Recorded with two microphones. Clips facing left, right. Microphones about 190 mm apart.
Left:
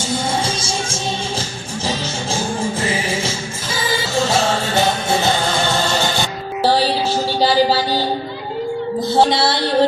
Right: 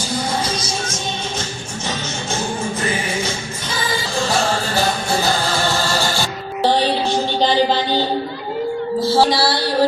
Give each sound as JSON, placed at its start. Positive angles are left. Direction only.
{"t": 0.0, "sound": "music", "side_deg": 25}
{"t": 2.9, "sound": "music", "side_deg": 30}
{"t": 3.7, "sound": "music", "side_deg": 0}
{"t": 5.7, "sound": "music", "side_deg": 20}
{"t": 6.6, "sound": "music", "side_deg": 5}
{"t": 9.0, "sound": "music", "side_deg": 20}